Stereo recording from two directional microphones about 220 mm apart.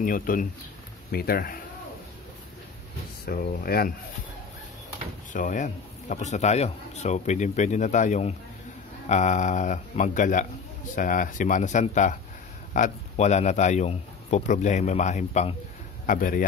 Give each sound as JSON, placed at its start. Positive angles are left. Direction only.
{"t": 0.0, "sound": "speech", "side_deg": 40}
{"t": 3.3, "sound": "speech", "side_deg": 40}
{"t": 5.3, "sound": "speech", "side_deg": 35}